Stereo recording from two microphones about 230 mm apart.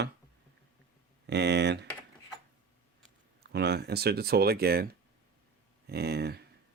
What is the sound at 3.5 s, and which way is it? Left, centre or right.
Speech, right.